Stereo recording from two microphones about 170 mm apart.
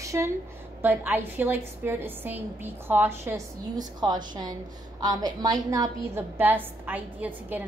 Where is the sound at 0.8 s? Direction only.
10° right (ahead or behind).